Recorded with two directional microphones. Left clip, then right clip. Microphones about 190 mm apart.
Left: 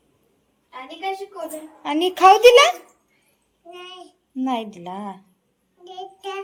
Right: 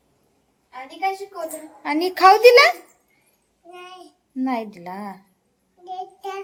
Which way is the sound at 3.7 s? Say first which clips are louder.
Left 1 dB; 5° right (ahead or behind).